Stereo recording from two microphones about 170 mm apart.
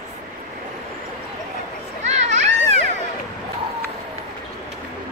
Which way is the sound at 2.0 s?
40° right (ahead or behind).